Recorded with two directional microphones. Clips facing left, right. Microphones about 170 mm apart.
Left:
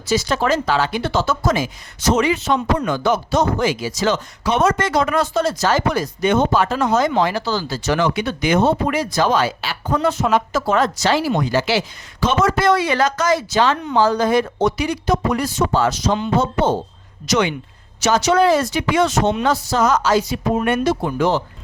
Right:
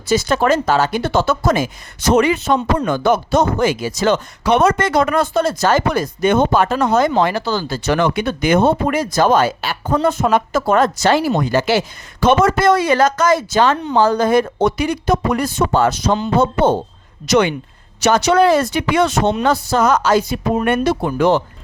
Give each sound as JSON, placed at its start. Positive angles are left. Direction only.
{"t": 0.1, "sound": "speech", "side_deg": -50}